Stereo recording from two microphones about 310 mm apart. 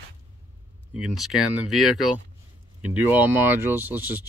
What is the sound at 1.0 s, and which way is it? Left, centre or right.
Speech, centre.